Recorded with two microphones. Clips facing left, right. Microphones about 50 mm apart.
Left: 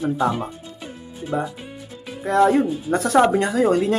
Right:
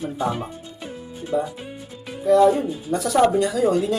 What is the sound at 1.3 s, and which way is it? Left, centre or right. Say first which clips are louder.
Music: right 1 dB; left.